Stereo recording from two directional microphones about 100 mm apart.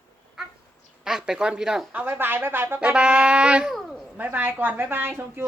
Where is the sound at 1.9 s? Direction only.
15° right (ahead or behind).